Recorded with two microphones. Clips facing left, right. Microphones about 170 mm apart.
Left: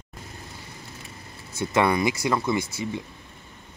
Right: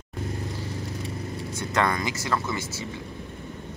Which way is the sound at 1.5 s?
10° left (ahead or behind).